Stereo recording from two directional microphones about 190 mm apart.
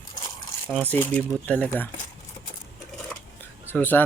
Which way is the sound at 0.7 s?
10° left (ahead or behind).